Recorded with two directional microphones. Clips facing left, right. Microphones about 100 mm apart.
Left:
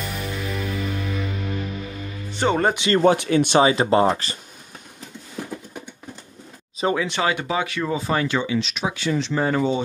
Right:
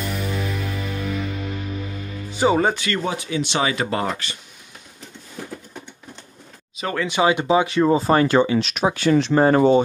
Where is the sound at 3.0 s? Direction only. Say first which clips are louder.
Left 8 dB; 60° left (ahead or behind).